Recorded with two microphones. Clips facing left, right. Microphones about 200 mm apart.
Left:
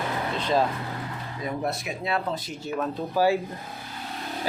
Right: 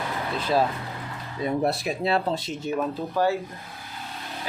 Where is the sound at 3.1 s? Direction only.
10° left (ahead or behind).